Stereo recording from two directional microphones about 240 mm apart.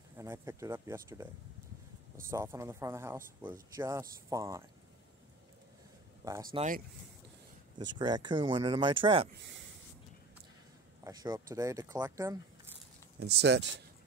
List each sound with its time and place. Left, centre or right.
0.2 s speech: centre
2.3 s speech: centre
6.5 s speech: right
7.8 s speech: centre
11.1 s speech: centre
13.2 s speech: right